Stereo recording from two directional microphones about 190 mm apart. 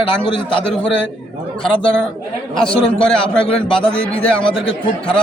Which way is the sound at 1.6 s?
5° left (ahead or behind).